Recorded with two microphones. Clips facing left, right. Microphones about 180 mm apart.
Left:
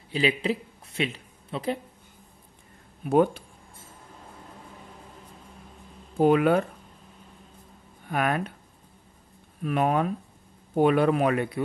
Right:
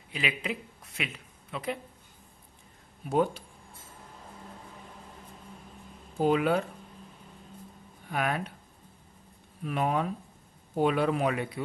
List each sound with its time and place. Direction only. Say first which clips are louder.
0.1 s speech: left 8 dB; 30° left (ahead or behind)
3.1 s speech: left 6 dB; 60° left (ahead or behind)
6.1 s speech: left 5 dB; 55° left (ahead or behind)
8.1 s speech: left 4 dB; 55° left (ahead or behind)
9.6 s speech: left 5 dB; 60° left (ahead or behind)